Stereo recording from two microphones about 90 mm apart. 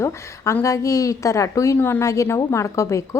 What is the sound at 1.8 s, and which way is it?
A woman's voice, 25° left (ahead or behind).